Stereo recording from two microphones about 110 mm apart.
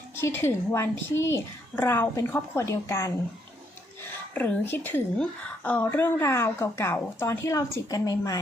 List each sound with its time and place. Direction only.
0.2 s a woman's voice: 20° left (ahead or behind)
4.4 s a woman's voice: 15° left (ahead or behind); by 8.4 s 30° left (ahead or behind)